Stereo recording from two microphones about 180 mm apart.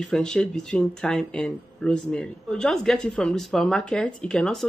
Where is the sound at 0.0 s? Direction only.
5° left (ahead or behind).